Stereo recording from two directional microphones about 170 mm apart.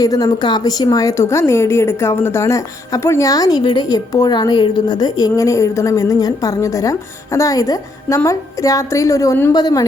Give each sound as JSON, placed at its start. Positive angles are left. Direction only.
{"t": 0.0, "sound": "a woman's voice", "side_deg": 20}